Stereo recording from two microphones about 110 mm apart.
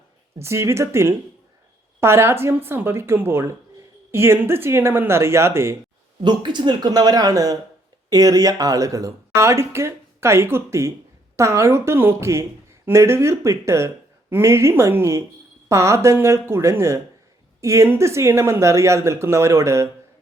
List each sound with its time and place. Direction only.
0.3 s a woman's voice: 25° right (ahead or behind)
6.2 s a woman's voice: 45° right (ahead or behind); by 19.9 s 25° right (ahead or behind)